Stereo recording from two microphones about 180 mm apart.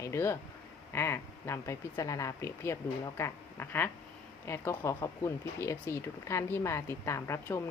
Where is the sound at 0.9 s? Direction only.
15° left (ahead or behind).